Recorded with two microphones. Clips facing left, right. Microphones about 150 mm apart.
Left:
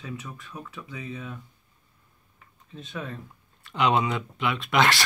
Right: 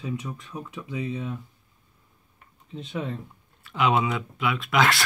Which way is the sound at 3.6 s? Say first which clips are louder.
Even; 5° right (ahead or behind).